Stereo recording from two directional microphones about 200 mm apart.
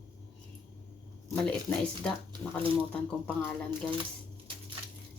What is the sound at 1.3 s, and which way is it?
Speech, 5° left (ahead or behind).